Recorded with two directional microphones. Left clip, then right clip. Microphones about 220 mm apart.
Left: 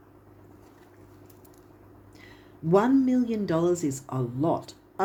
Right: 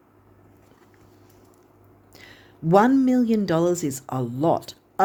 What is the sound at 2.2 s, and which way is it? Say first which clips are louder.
Speech: right 4 dB; 50° right (ahead or behind).